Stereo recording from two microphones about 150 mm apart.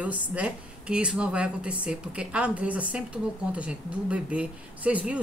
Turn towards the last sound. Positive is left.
turn(degrees=-10)  # may be behind; listen again after turning